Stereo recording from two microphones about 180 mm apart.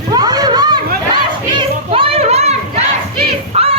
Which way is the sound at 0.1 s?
20° right (ahead or behind).